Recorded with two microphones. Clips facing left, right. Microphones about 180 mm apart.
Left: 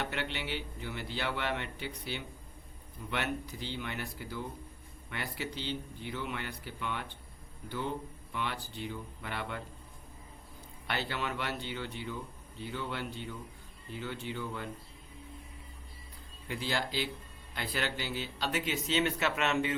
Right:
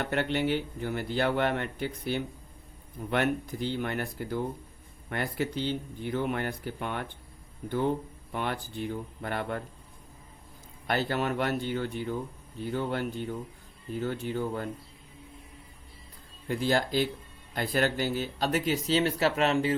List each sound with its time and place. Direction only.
0.0 s speech: 50° right (ahead or behind)
8.3 s speech: 50° right (ahead or behind)
10.8 s speech: 45° right (ahead or behind)
16.5 s speech: 45° right (ahead or behind)